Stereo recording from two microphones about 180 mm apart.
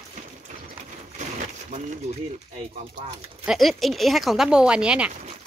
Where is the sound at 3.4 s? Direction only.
Centre (ahead or behind).